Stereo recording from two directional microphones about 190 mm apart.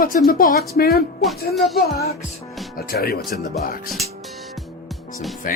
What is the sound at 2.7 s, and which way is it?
Speech, 50° left (ahead or behind).